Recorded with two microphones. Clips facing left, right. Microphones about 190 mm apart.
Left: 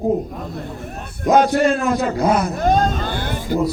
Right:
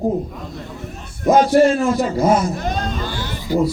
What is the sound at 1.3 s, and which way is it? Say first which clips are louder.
A man's voice: right 2 dB; 60° left (ahead or behind).